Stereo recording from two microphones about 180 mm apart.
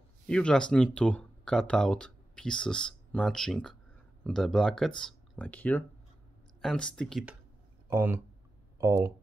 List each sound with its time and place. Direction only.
0.3 s speech: 5° left (ahead or behind)
7.9 s speech: 10° right (ahead or behind)